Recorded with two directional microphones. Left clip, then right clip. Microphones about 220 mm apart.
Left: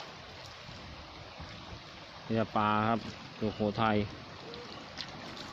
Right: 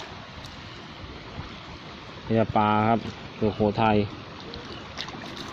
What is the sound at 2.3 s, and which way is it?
Speech, 5° right (ahead or behind).